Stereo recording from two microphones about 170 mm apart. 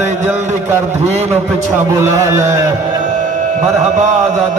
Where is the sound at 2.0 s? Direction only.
15° right (ahead or behind).